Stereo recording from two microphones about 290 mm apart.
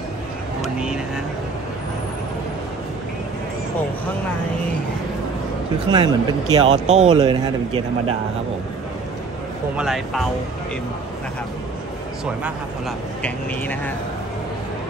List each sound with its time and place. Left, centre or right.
0.6 s vehicle: centre
5.9 s speech: centre
9.8 s speech: centre
13.2 s speech: centre